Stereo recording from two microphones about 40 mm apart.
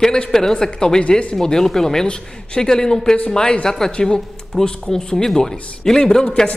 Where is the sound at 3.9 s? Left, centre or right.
Left.